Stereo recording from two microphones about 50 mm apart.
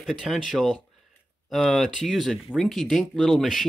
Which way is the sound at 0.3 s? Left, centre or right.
Centre.